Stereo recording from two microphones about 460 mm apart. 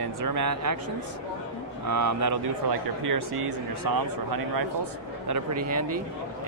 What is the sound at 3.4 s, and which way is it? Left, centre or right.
Speech, right.